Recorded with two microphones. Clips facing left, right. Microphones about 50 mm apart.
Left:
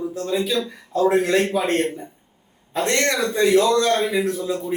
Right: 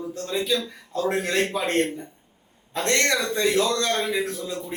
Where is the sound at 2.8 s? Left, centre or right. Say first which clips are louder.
Left 2 dB; centre.